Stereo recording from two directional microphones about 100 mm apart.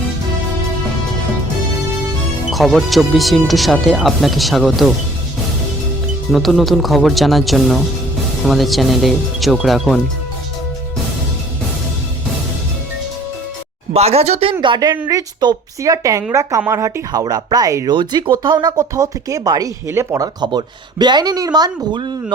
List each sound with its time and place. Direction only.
2.5 s speech: centre (ahead or behind)
6.3 s speech: centre (ahead or behind)
13.9 s speech: 90° right
15.0 s speech: 45° right (ahead or behind)
15.8 s speech: 35° right (ahead or behind)
17.1 s speech: 40° right (ahead or behind)
19.9 s speech: 25° right (ahead or behind)
20.4 s speech: 45° right (ahead or behind)